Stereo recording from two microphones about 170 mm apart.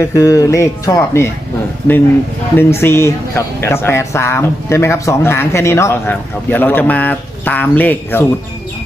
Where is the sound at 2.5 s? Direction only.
15° left (ahead or behind).